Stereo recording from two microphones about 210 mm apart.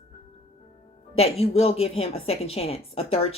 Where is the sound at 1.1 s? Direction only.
30° left (ahead or behind).